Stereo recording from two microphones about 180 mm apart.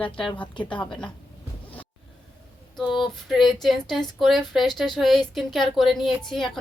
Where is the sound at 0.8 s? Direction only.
5° left (ahead or behind).